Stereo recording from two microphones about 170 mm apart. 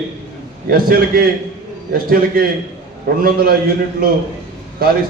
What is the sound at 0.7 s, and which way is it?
A man's voice, 60° right (ahead or behind).